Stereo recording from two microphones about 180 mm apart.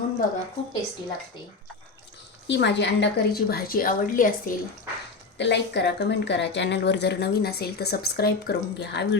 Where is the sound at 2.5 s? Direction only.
75° left (ahead or behind); by 4.5 s 50° left (ahead or behind).